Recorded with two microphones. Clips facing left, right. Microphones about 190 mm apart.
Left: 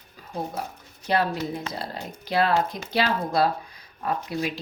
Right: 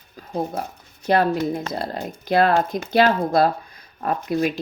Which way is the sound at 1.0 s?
50° right (ahead or behind).